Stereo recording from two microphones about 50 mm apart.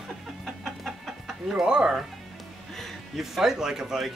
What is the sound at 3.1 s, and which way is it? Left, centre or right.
Speech, centre.